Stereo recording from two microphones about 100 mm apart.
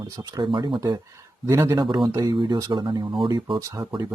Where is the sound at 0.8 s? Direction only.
35° right (ahead or behind).